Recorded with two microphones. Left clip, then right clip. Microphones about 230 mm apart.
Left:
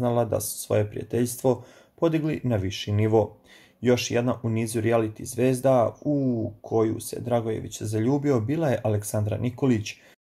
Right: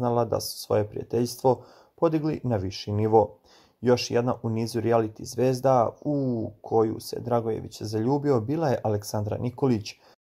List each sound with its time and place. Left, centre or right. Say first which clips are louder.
0.0 s speech: even; right